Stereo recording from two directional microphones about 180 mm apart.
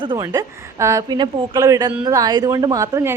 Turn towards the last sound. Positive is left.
turn(degrees=-20)  # may be behind; listen again after turning